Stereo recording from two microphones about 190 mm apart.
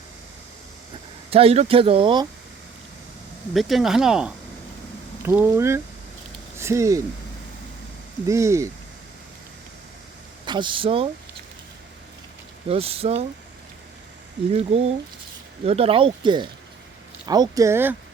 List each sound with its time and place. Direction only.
1.3 s speech: 30° right (ahead or behind)
3.5 s speech: centre (ahead or behind); by 7.0 s 15° right (ahead or behind)
8.3 s speech: 15° right (ahead or behind)
10.4 s speech: 25° right (ahead or behind)
12.6 s speech: 30° right (ahead or behind)
14.5 s speech: 30° right (ahead or behind); by 17.9 s 10° right (ahead or behind)